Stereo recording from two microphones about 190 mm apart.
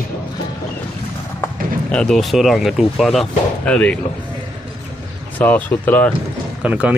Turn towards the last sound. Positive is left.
turn(degrees=-5)  # may be behind; listen again after turning